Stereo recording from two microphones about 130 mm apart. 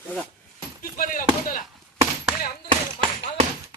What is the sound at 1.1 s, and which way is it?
Speech, 90° left.